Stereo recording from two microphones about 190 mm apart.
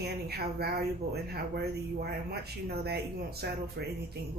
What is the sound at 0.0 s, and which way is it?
Speech, 55° right (ahead or behind).